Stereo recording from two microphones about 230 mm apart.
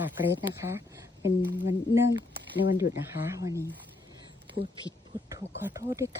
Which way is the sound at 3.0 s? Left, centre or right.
Centre.